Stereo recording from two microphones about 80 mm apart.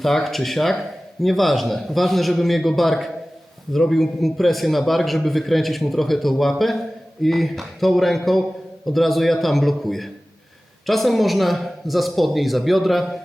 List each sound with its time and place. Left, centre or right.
0.0 s a man's voice: centre